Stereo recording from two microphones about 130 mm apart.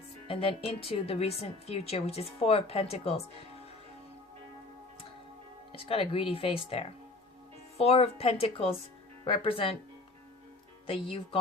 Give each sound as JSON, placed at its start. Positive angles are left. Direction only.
{"t": 0.3, "sound": "a woman's voice", "side_deg": 45}
{"t": 5.7, "sound": "a woman's voice", "side_deg": 45}
{"t": 10.8, "sound": "a woman's voice", "side_deg": 40}